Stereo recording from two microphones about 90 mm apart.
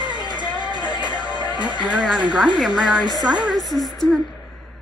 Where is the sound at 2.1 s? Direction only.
15° right (ahead or behind); by 4.1 s 5° left (ahead or behind).